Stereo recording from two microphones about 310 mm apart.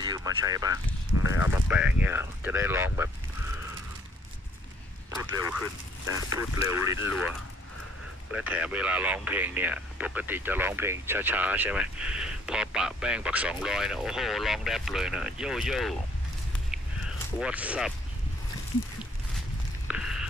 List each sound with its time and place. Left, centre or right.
0.0 s speech: centre
1.1 s speech: left
1.4 s speech: centre
6.1 s speech: centre
8.3 s speech: centre
17.4 s speech: centre
19.9 s a sound: centre